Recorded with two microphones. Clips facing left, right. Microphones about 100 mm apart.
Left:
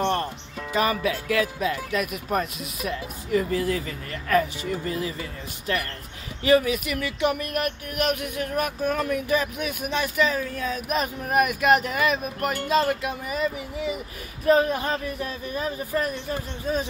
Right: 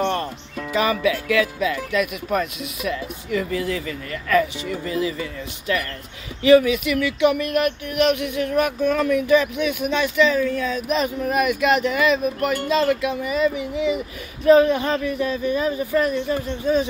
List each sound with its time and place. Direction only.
1.3 s speech: 40° left (ahead or behind)
6.4 s a sound: 45° left (ahead or behind)
14.4 s speech: 90° right
15.0 s speech: 40° left (ahead or behind)